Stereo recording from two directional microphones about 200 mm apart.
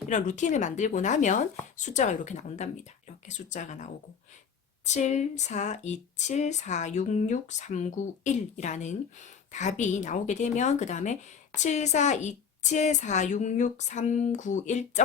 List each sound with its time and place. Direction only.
0.1 s speech: 40° left (ahead or behind)